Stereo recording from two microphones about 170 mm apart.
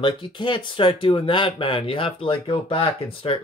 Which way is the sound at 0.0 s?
30° left (ahead or behind).